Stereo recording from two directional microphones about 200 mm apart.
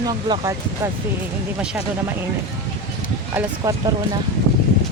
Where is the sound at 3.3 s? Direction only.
10° right (ahead or behind).